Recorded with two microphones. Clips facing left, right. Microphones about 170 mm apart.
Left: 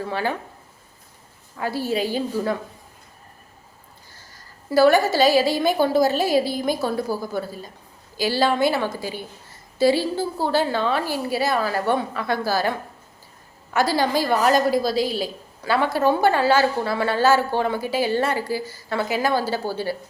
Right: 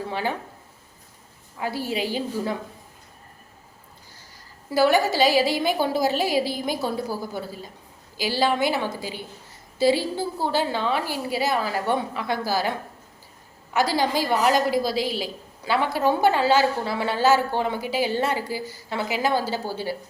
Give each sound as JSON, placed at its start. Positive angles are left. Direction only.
{"t": 0.1, "sound": "speech", "side_deg": -15}
{"t": 1.5, "sound": "a woman's voice", "side_deg": -15}
{"t": 4.7, "sound": "a woman's voice", "side_deg": -15}
{"t": 8.1, "sound": "a woman's voice", "side_deg": -15}
{"t": 13.7, "sound": "a woman's voice", "side_deg": -15}